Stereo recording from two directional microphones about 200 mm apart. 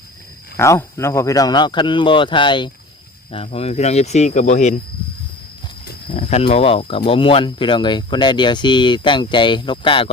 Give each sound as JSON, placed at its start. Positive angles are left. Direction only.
{"t": 0.5, "sound": "speech", "side_deg": 15}
{"t": 6.1, "sound": "speech", "side_deg": 30}